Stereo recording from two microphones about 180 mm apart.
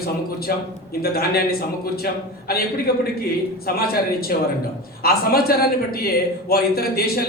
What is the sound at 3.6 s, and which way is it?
A man's voice, 60° left (ahead or behind).